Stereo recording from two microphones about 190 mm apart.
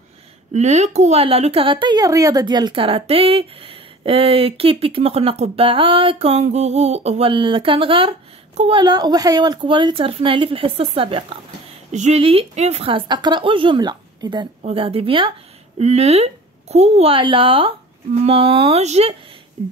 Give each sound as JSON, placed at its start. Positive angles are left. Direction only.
{"t": 0.5, "sound": "a woman's voice", "side_deg": -35}